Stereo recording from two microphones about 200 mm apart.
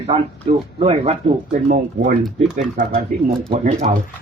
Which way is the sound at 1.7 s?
45° right (ahead or behind).